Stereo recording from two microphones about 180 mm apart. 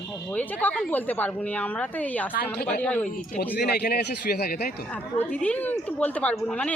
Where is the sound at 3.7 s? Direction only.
60° left (ahead or behind).